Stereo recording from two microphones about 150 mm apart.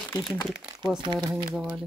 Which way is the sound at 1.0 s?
30° right (ahead or behind).